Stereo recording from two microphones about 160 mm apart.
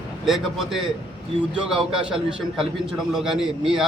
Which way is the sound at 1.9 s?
5° right (ahead or behind).